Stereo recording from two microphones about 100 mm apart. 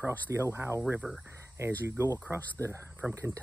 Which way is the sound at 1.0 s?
5° right (ahead or behind).